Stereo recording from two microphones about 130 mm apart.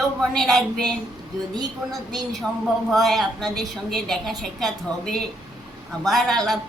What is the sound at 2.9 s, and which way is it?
A woman's voice, centre (ahead or behind).